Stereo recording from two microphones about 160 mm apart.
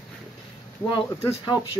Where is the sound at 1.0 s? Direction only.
20° left (ahead or behind).